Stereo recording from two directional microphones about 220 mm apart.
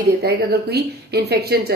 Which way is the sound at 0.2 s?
45° right (ahead or behind).